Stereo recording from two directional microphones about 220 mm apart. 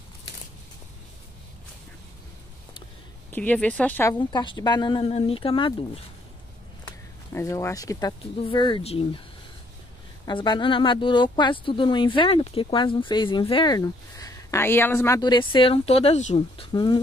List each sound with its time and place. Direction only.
3.3 s speech: 10° left (ahead or behind); by 5.8 s 25° left (ahead or behind)
7.3 s speech: 15° left (ahead or behind)
10.2 s speech: 20° left (ahead or behind)